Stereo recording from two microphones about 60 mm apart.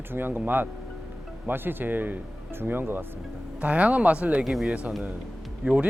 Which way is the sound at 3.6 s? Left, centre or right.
Right.